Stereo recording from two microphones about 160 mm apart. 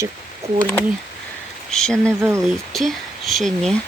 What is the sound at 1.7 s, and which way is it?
Speech, 5° left (ahead or behind).